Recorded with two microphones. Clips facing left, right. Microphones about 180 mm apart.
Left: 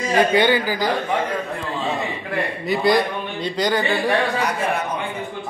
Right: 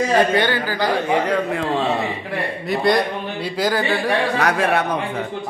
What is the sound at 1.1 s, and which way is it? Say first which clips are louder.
Speech: right 4 dB; 80° right.